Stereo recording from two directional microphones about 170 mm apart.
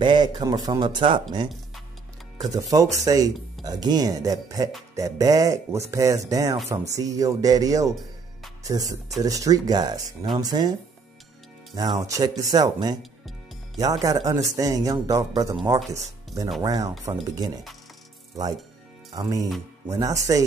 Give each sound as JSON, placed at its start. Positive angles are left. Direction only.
{"t": 0.0, "sound": "speech", "side_deg": -25}
{"t": 2.5, "sound": "speech", "side_deg": -20}
{"t": 11.7, "sound": "speech", "side_deg": -25}
{"t": 19.1, "sound": "speech", "side_deg": -20}